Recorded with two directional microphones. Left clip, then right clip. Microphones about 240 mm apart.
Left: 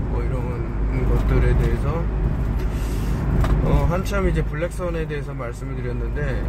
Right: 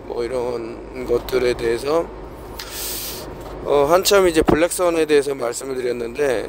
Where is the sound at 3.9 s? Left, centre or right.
Right.